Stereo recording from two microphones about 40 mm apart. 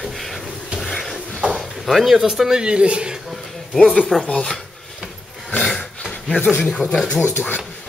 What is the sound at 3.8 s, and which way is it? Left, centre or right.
Speech, centre.